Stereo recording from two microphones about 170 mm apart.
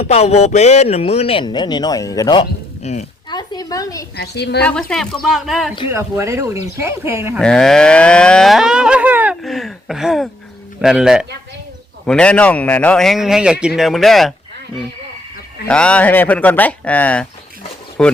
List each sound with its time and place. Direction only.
0.0 s a man's voice: 40° left (ahead or behind)
2.8 s a man's voice: 40° left (ahead or behind)
3.2 s a sound: 25° left (ahead or behind)
4.1 s a woman's voice: 75° left (ahead or behind)
4.6 s a man's voice: 5° left (ahead or behind)
5.9 s speech: 15° right (ahead or behind)
7.3 s moo: 5° left (ahead or behind)
10.8 s a man's voice: 5° right (ahead or behind)
15.6 s speech: 5° left (ahead or behind)